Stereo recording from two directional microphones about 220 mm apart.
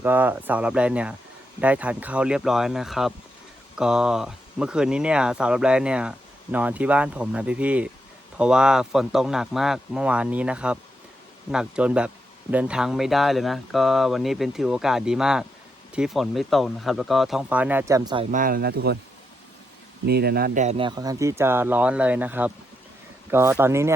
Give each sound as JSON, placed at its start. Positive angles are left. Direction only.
{"t": 0.0, "sound": "speech", "side_deg": -10}
{"t": 18.3, "sound": "speech", "side_deg": -40}
{"t": 20.1, "sound": "speech", "side_deg": -45}